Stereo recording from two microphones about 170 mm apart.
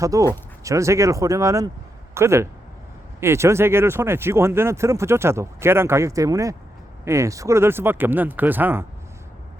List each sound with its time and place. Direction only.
0.0 s speech: 20° right (ahead or behind)